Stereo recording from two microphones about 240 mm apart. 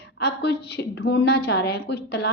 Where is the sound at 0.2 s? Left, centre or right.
Left.